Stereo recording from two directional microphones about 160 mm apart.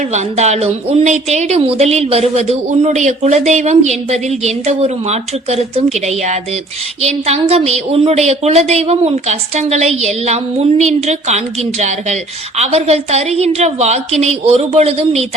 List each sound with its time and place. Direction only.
0.1 s a woman's voice: 45° right (ahead or behind)